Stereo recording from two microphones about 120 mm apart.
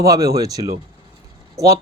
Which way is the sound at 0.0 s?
30° right (ahead or behind).